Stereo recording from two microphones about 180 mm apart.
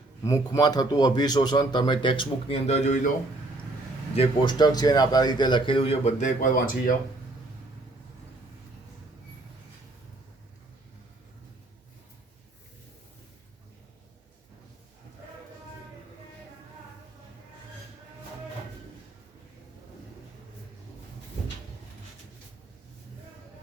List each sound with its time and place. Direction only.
0.3 s a man's voice: 20° left (ahead or behind); by 3.1 s 40° left (ahead or behind)
4.1 s a man's voice: 30° left (ahead or behind); by 6.9 s 45° left (ahead or behind)